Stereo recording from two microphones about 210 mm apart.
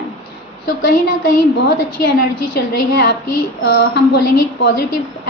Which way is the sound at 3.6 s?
55° left (ahead or behind).